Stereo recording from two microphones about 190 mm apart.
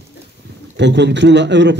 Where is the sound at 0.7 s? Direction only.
65° right (ahead or behind).